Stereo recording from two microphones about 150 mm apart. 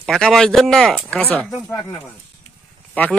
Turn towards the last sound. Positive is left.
turn(degrees=10)  # may be behind; listen again after turning